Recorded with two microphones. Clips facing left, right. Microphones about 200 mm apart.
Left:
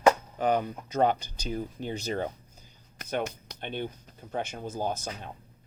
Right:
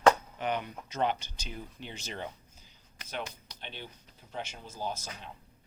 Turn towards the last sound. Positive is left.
turn(degrees=50)  # may be behind; listen again after turning